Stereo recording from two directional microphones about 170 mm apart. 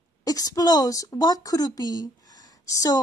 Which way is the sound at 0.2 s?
20° left (ahead or behind).